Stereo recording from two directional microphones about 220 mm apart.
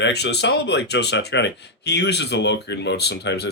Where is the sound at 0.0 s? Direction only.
50° left (ahead or behind).